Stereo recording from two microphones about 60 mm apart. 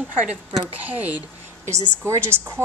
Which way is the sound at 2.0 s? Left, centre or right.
Right.